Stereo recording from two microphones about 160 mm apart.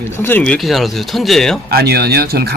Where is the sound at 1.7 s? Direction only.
80° right.